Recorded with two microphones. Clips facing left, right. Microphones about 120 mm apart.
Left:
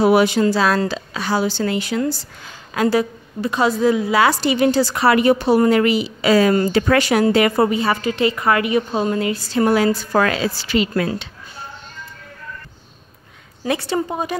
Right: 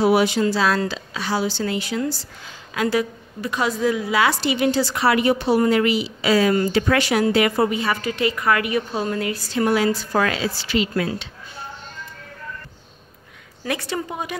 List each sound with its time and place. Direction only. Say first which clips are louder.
0.0 s a woman's voice: left 3 dB; 50° left (ahead or behind)
2.7 s a woman's voice: left 4 dB; 35° left (ahead or behind)
4.2 s a woman's voice: left 2 dB; 40° left (ahead or behind)
13.7 s a woman's voice: left 5 dB; 30° left (ahead or behind)